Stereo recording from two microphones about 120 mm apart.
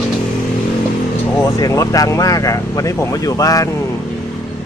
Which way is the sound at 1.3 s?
25° left (ahead or behind).